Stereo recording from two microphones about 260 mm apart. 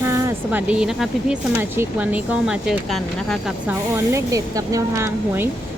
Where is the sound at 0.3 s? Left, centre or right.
Centre.